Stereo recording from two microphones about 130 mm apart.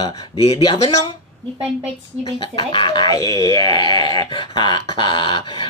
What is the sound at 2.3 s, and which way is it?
Speech, 40° left (ahead or behind).